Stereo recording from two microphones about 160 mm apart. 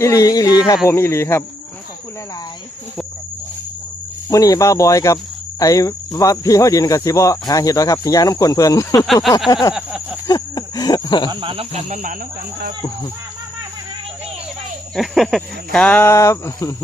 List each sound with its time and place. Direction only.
0.0 s speech: 20° left (ahead or behind)
4.3 s speech: 20° left (ahead or behind)
9.7 s a sound: 10° right (ahead or behind)
10.2 s wild animals: 25° left (ahead or behind)
11.3 s speech: 30° right (ahead or behind)
14.9 s speech: centre (ahead or behind); by 16.7 s 20° left (ahead or behind)